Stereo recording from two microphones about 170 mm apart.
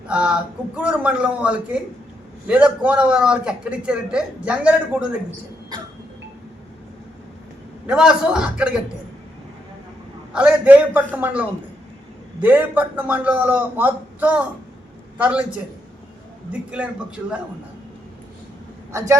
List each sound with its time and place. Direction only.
0.1 s a sound: 5° right (ahead or behind)
0.8 s a man's voice: 5° right (ahead or behind)
7.9 s a man's voice: 5° right (ahead or behind)
10.3 s a man's voice: 10° right (ahead or behind)
16.5 s a man's voice: 5° right (ahead or behind)
18.9 s a man's voice: 15° right (ahead or behind)